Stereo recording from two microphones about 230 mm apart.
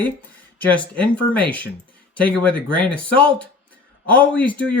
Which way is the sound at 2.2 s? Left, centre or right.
Centre.